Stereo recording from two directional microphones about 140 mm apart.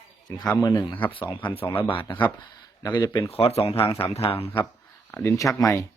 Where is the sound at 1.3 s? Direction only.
40° left (ahead or behind).